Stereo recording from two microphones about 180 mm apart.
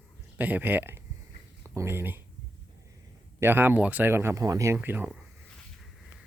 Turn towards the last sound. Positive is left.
turn(degrees=-10)  # may be behind; listen again after turning